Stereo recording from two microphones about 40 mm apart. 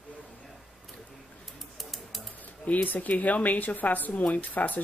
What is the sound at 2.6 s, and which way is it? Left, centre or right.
A woman's voice, left.